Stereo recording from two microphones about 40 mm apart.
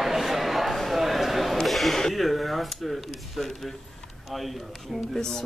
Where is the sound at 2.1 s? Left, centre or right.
Centre.